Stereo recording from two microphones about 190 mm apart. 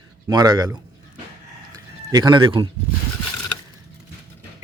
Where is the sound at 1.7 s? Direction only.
20° right (ahead or behind).